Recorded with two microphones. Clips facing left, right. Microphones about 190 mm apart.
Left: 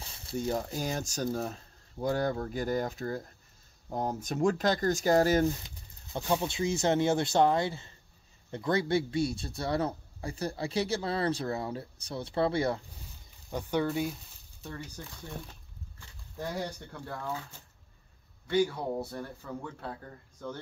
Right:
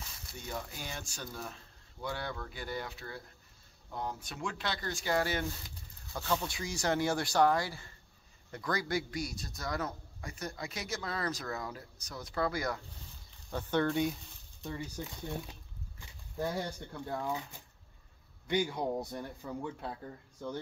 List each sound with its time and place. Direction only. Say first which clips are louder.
0.0 s speech: left 13 dB; 30° left (ahead or behind)
6.1 s a man's voice: left 5 dB; 25° left (ahead or behind)
13.5 s speech: left 1 dB; 15° left (ahead or behind)
15.0 s a man's voice: right 4 dB; 15° right (ahead or behind)
16.0 s a sound: right 3 dB; 15° right (ahead or behind)
17.2 s a man's voice: right 1 dB; 15° right (ahead or behind)